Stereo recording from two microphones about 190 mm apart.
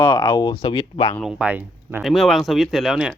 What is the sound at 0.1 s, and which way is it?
Speech, 25° left (ahead or behind).